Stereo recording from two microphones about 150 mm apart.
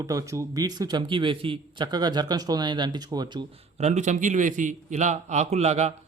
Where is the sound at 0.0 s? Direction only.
20° right (ahead or behind).